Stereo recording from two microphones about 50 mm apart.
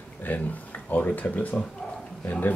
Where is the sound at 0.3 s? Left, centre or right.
Left.